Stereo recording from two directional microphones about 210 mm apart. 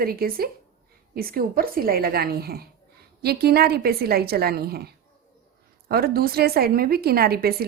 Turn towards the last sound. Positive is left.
turn(degrees=-45)  # may be behind; listen again after turning